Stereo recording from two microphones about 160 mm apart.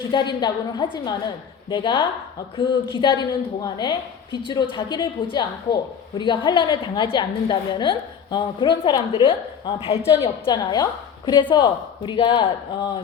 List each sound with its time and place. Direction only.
0.1 s a woman's voice: 25° left (ahead or behind)